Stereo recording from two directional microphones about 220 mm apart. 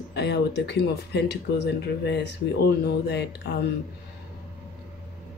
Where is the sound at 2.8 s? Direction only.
50° left (ahead or behind).